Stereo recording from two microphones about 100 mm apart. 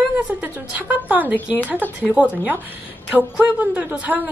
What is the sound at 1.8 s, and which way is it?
Speech, 20° left (ahead or behind).